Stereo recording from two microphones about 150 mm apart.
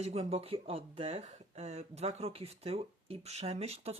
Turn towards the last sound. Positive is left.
turn(degrees=-45)  # may be behind; listen again after turning